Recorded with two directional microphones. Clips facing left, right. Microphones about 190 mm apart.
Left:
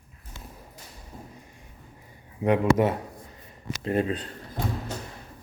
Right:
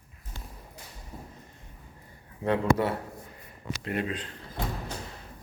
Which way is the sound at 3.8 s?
35° left (ahead or behind).